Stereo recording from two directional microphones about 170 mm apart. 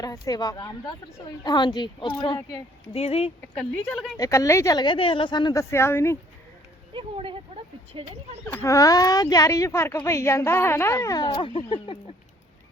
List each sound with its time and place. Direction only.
0.0 s a woman's voice: 20° left (ahead or behind)
3.5 s a woman's voice: 5° left (ahead or behind)
4.2 s a woman's voice: 20° left (ahead or behind)
6.9 s speech: 30° right (ahead or behind)
8.5 s a woman's voice: 20° left (ahead or behind)